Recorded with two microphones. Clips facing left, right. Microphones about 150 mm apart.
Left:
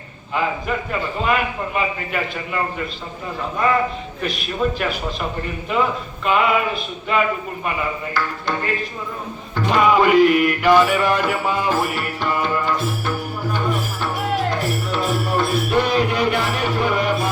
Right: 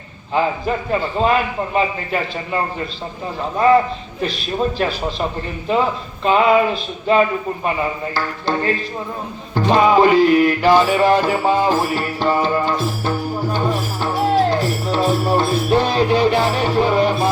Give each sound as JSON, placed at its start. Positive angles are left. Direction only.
{"t": 0.3, "sound": "a man's voice", "side_deg": -30}
{"t": 4.2, "sound": "a man's voice", "side_deg": -30}
{"t": 9.6, "sound": "music", "side_deg": -30}